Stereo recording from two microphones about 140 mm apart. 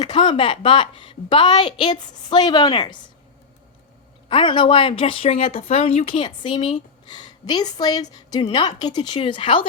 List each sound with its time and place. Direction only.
0.0 s speech: 35° left (ahead or behind)
4.3 s speech: 35° left (ahead or behind)